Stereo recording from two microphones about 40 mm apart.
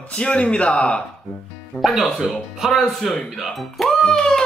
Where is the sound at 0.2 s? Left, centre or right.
Left.